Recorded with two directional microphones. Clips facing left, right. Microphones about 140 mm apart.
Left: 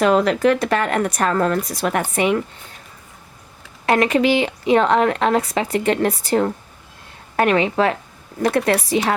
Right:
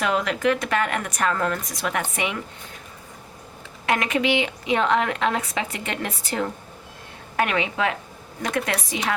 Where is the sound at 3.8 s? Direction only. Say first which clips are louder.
Left 6 dB; 35° left (ahead or behind).